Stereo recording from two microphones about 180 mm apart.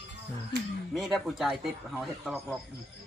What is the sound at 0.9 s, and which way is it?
Speech, centre (ahead or behind).